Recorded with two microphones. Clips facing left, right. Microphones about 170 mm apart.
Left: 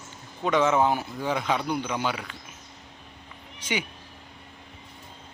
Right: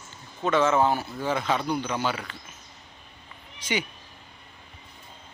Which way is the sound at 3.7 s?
10° left (ahead or behind).